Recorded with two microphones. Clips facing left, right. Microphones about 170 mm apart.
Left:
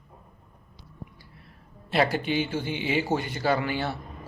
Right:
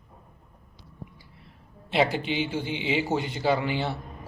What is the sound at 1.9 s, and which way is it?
A man's voice, 20° right (ahead or behind).